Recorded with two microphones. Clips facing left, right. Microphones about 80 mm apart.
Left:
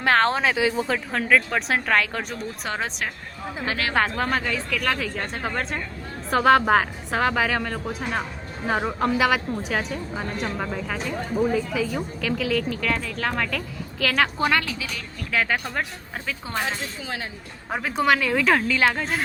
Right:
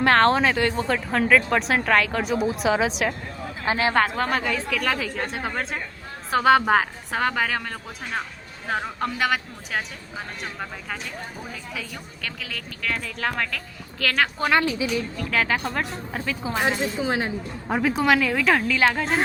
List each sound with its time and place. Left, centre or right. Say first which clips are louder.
0.0 s speech: right 2 dB; centre
3.7 s a woman's voice: right 5 dB; right
3.9 s speech: right 1 dB; centre
14.5 s a woman's voice: right 3 dB; right
15.3 s speech: even; centre
16.6 s a woman's voice: right 5 dB; centre
17.7 s speech: right 1 dB; centre